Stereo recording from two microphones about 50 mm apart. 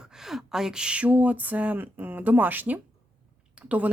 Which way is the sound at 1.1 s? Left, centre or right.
Right.